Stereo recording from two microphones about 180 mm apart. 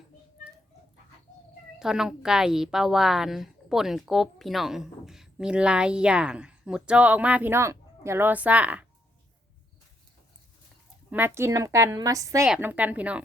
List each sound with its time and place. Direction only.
1.8 s a woman's voice: 5° right (ahead or behind)
11.1 s a woman's voice: 10° right (ahead or behind)